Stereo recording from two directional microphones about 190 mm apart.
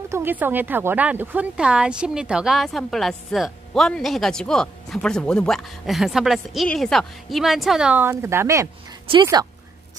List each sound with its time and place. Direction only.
0.1 s speech: 10° right (ahead or behind)